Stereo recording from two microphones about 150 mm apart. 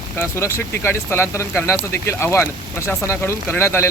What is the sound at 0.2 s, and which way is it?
Speech, 15° left (ahead or behind).